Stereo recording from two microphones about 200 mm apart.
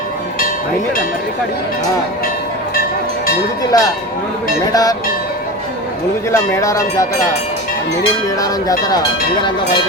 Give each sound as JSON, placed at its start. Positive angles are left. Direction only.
{"t": 3.7, "sound": "speech", "side_deg": 20}
{"t": 6.3, "sound": "speech", "side_deg": 15}